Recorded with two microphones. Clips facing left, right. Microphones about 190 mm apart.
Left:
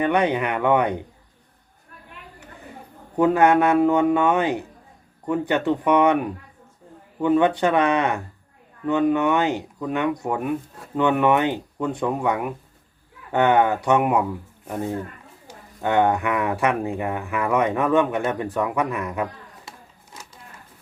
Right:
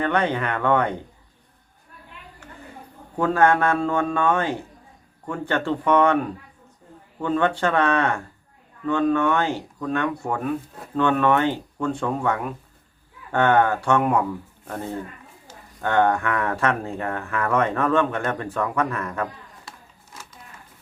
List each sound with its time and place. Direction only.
0.0 s speech: 15° left (ahead or behind)
3.2 s speech: 15° left (ahead or behind)
15.4 s speech: 15° left (ahead or behind)